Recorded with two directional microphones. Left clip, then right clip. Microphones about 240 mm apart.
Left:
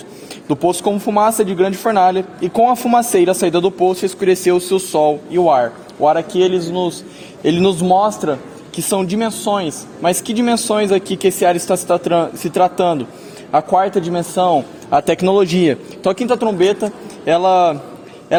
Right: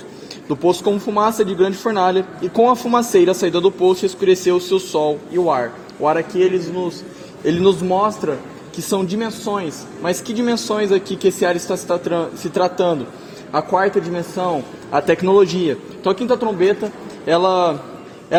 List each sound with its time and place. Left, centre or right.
0.4 s a man's voice: left